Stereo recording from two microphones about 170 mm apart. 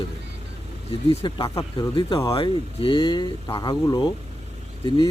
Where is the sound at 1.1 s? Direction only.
30° left (ahead or behind).